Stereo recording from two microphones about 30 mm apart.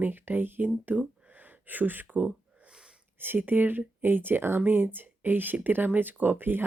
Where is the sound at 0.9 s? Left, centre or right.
Right.